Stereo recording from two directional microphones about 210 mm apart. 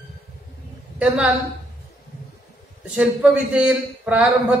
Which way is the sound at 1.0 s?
5° right (ahead or behind).